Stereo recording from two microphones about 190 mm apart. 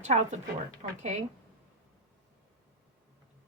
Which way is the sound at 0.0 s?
40° right (ahead or behind).